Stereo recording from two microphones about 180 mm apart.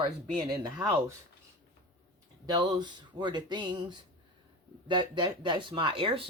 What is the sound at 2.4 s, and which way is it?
Speech, 25° right (ahead or behind).